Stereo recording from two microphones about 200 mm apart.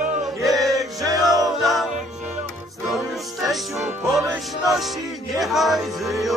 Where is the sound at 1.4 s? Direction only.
Centre (ahead or behind).